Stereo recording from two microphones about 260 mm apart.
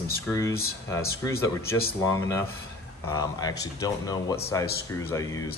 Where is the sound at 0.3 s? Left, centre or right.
Centre.